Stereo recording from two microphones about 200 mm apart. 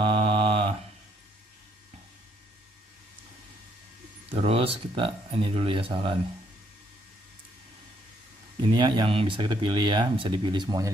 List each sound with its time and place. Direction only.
0.0 s mantra: 25° right (ahead or behind)
4.3 s speech: 30° right (ahead or behind)
8.7 s speech: 25° right (ahead or behind)